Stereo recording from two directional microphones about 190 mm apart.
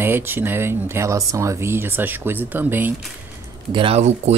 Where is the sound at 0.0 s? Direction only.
10° right (ahead or behind).